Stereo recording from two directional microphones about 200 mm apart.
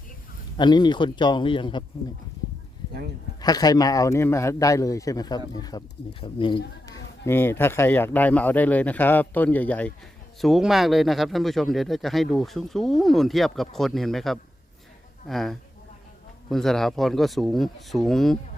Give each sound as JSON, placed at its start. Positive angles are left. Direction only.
{"t": 0.5, "sound": "a man's voice", "side_deg": 20}
{"t": 3.4, "sound": "a man's voice", "side_deg": 20}
{"t": 6.8, "sound": "speech", "side_deg": 15}